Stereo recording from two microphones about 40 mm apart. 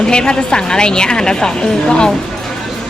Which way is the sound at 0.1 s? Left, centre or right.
Left.